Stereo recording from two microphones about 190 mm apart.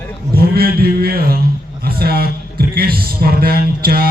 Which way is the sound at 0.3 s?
55° right (ahead or behind).